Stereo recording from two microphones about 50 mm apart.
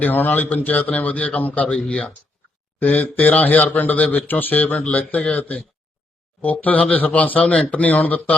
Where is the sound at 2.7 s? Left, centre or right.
Left.